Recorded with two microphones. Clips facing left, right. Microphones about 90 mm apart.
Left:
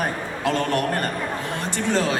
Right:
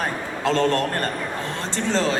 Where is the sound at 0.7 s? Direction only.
15° left (ahead or behind).